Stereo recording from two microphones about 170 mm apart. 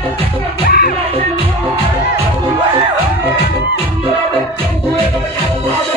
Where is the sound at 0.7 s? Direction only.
60° left (ahead or behind).